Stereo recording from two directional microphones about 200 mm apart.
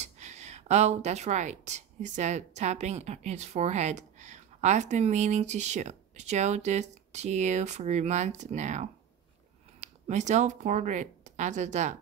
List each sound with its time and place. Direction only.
0.0 s speech: 35° right (ahead or behind)